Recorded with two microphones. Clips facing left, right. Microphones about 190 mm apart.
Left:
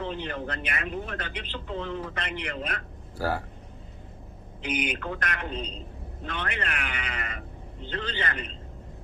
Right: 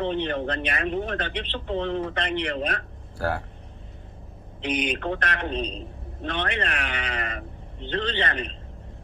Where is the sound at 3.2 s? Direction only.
5° left (ahead or behind).